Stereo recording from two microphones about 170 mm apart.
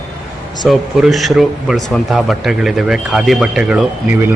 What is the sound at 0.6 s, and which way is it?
Speech, centre (ahead or behind).